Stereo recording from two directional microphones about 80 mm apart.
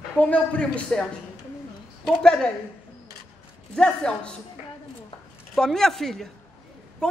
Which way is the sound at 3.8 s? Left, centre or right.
Centre.